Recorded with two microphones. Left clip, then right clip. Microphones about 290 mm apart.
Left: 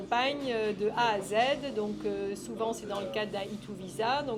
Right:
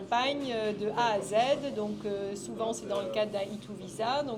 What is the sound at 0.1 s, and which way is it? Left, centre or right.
A woman's voice, centre.